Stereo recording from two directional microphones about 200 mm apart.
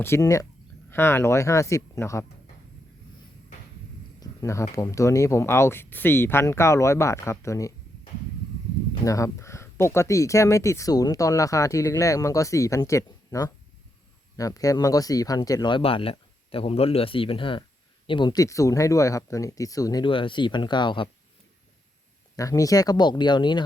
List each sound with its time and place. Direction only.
0.0 s speech: 15° left (ahead or behind)
4.2 s speech: 15° left (ahead or behind)
9.0 s speech: 15° left (ahead or behind)
22.4 s speech: 15° left (ahead or behind)